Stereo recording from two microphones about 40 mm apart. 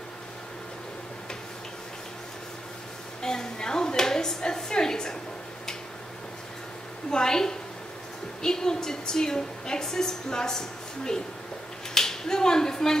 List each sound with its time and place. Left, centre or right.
3.2 s a woman's voice: centre
7.1 s a woman's voice: centre
11.9 s finger snapping: centre